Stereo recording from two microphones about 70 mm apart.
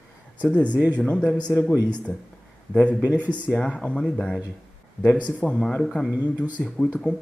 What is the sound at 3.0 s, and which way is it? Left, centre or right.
Speech, right.